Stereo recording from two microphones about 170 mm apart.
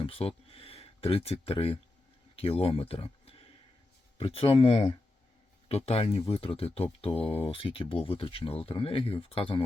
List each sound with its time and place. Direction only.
0.0 s speech: 35° left (ahead or behind)